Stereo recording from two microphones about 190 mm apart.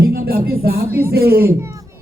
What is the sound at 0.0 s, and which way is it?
Music, 55° right (ahead or behind).